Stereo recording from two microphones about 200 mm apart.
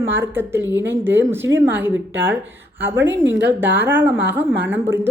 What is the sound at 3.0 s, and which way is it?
Speech, 65° right (ahead or behind).